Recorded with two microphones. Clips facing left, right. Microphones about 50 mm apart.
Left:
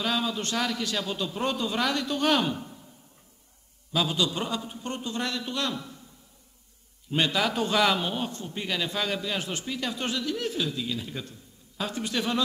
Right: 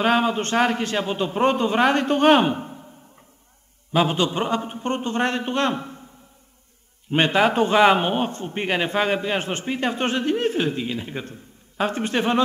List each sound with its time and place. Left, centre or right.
0.0 s a man's voice: right
3.9 s a man's voice: right
7.1 s a man's voice: right